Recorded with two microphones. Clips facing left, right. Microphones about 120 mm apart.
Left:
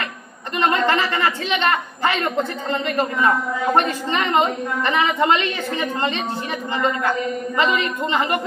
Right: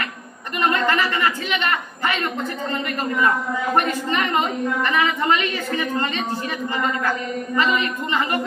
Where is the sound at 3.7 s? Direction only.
25° left (ahead or behind).